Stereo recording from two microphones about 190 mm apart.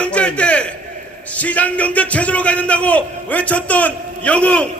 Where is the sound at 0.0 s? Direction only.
5° left (ahead or behind).